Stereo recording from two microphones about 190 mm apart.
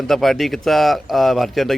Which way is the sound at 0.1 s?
Centre (ahead or behind).